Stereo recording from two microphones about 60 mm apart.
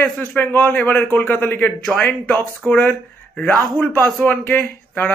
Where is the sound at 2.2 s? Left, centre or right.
Left.